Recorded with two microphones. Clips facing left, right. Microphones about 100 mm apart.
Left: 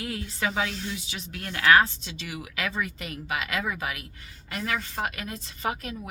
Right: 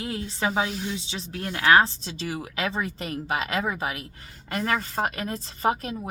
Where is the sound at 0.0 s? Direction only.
30° right (ahead or behind).